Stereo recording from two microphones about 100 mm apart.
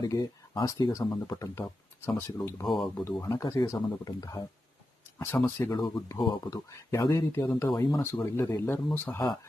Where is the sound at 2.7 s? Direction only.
Centre (ahead or behind).